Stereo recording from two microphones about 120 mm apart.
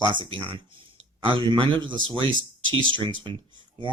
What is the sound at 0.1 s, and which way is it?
Speech, 40° right (ahead or behind).